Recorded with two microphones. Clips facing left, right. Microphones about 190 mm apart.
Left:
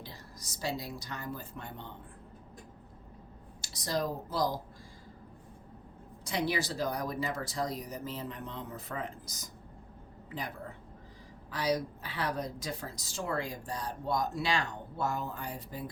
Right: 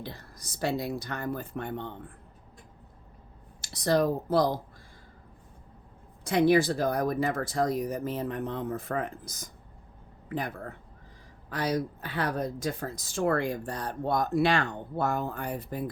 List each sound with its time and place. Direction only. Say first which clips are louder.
0.0 s speech: right 6 dB; 60° right (ahead or behind)
3.6 s a woman's voice: right 8 dB; 60° right (ahead or behind)
6.2 s a woman's voice: right 10 dB; 55° right (ahead or behind)